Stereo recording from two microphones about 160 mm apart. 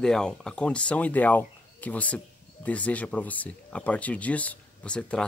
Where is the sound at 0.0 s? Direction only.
5° left (ahead or behind).